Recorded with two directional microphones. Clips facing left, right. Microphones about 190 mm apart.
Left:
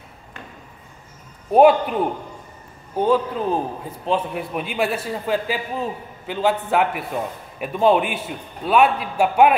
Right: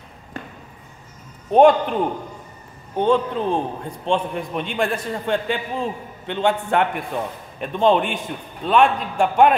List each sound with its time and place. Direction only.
1.5 s a man's voice: 5° left (ahead or behind)
3.0 s a man's voice: 5° left (ahead or behind)